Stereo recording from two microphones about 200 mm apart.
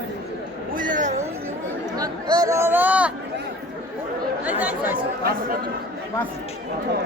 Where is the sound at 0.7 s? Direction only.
40° right (ahead or behind).